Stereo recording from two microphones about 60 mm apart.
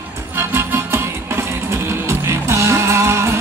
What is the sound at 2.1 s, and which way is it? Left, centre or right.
Music, right.